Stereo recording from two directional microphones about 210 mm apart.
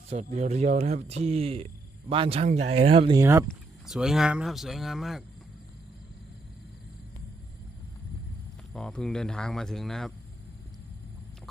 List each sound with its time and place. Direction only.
0.1 s speech: 30° right (ahead or behind)
3.2 s speech: 15° right (ahead or behind)
3.4 s speech: centre (ahead or behind)
8.7 s speech: 5° left (ahead or behind)